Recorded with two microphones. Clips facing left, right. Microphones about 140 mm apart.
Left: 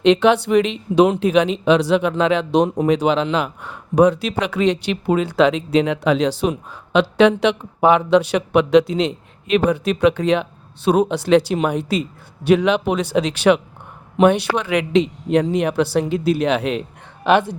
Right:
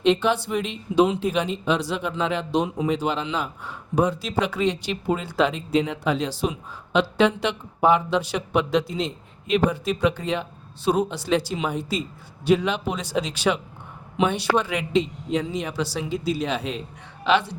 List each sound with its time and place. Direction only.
0.0 s speech: 75° left (ahead or behind)
17.2 s speech: 50° left (ahead or behind)